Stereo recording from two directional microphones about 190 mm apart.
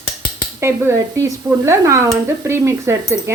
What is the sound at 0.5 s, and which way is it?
Speech, 15° right (ahead or behind).